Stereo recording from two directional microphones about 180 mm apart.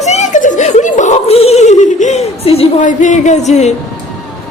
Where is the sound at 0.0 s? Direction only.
40° left (ahead or behind).